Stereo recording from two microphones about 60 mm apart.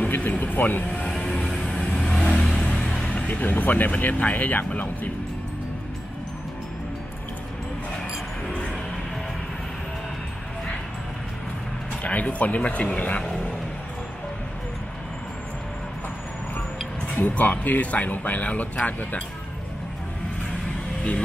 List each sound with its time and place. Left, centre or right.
0.0 s speech: left
1.0 s music: centre
1.6 s vehicle: centre
2.6 s speech: centre; by 4.6 s left
8.5 s music: centre
12.0 s speech: left
17.1 s speech: left